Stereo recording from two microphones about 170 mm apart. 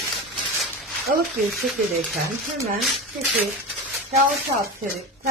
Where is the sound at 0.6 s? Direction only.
Centre (ahead or behind).